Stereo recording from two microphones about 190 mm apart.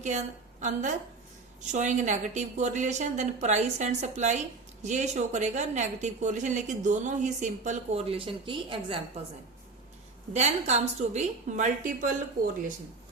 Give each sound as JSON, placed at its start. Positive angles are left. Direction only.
{"t": 0.0, "sound": "a woman's voice", "side_deg": -40}
{"t": 10.3, "sound": "a woman's voice", "side_deg": -35}